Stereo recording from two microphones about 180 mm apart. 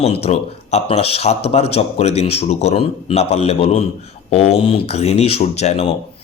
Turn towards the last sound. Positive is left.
turn(degrees=35)  # may be behind; listen again after turning